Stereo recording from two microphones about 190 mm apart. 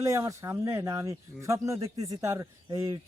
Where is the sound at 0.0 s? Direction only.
15° right (ahead or behind).